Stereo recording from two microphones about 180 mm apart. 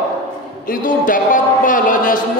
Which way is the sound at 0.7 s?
45° left (ahead or behind).